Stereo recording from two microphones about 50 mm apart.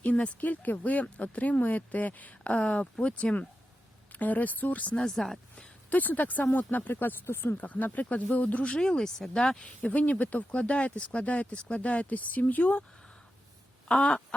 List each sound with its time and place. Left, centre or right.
0.0 s speech: left
4.1 s speech: left
5.0 s speech: centre
5.9 s speech: left
7.5 s speech: left
8.8 s speech: centre
9.8 s speech: left
13.8 s a sound: centre